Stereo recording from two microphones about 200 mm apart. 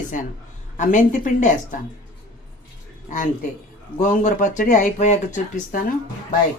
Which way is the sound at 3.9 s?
40° left (ahead or behind).